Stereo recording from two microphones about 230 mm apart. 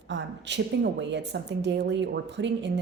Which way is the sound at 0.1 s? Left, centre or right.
Right.